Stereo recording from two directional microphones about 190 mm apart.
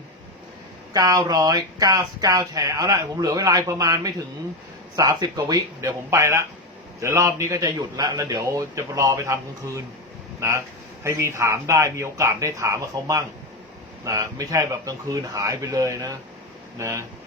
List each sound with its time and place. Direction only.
0.9 s a man's voice: 20° right (ahead or behind)